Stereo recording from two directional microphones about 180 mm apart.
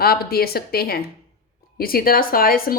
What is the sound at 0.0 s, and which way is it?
A woman's voice, 60° left (ahead or behind).